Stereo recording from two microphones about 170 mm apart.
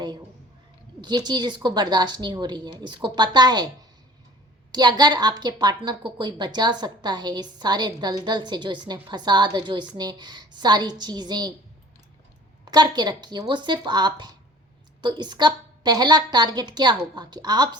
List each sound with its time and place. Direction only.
1.0 s a woman's voice: 25° right (ahead or behind)
4.7 s a woman's voice: 25° right (ahead or behind)
12.6 s a woman's voice: 25° right (ahead or behind)